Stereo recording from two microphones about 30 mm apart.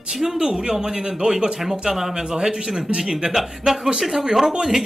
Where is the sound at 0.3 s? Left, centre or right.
Right.